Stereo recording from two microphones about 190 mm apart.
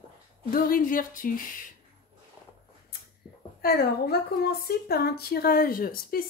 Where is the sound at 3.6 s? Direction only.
55° left (ahead or behind).